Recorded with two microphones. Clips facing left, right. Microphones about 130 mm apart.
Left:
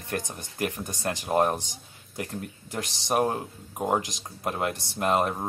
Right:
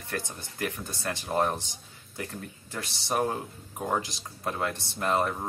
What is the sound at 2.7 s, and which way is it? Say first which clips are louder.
Speech: left 4 dB; 20° left (ahead or behind).